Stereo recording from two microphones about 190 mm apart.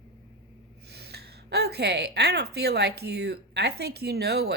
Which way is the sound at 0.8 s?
60° right (ahead or behind).